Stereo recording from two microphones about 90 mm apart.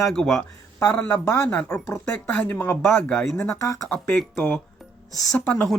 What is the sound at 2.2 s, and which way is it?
Speech, 15° left (ahead or behind).